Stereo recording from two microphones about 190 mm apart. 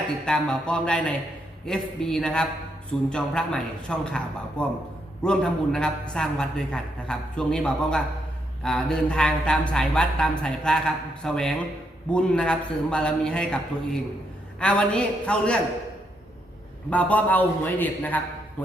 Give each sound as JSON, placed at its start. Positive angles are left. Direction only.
{"t": 0.3, "sound": "speech", "side_deg": 5}
{"t": 14.6, "sound": "speech", "side_deg": 5}
{"t": 16.9, "sound": "a man's voice", "side_deg": 10}